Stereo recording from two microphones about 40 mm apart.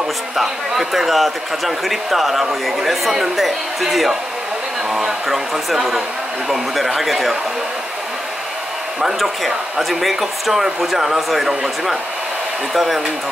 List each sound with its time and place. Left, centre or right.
0.4 s speech: centre
9.5 s speech: centre